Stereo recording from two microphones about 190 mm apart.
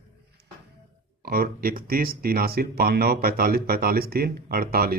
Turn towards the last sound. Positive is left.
turn(degrees=-50)  # may be behind; listen again after turning